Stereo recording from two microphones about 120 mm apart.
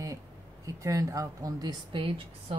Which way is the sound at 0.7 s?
30° right (ahead or behind).